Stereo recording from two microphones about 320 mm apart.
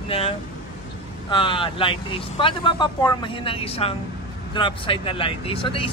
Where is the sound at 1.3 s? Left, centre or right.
Centre.